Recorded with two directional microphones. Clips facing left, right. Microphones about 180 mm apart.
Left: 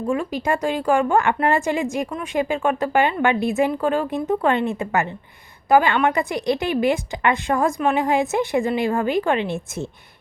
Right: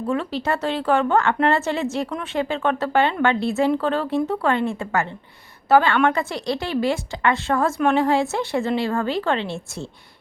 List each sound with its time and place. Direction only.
0.1 s a woman's voice: 10° left (ahead or behind)